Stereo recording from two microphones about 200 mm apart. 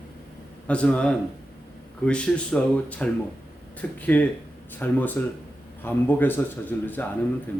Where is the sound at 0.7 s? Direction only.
5° left (ahead or behind).